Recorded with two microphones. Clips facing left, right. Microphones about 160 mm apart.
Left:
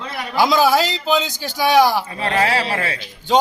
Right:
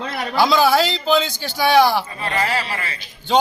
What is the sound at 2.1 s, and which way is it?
Speech, 75° left (ahead or behind).